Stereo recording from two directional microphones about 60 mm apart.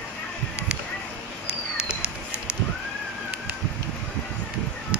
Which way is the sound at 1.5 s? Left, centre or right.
Centre.